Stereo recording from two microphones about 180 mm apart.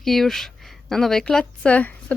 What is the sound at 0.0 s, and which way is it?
Speech, centre (ahead or behind).